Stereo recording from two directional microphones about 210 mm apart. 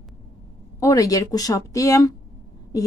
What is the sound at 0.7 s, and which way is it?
Speech, 15° left (ahead or behind).